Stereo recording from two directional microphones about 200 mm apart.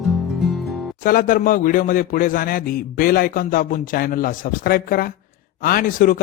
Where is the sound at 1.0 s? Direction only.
45° left (ahead or behind).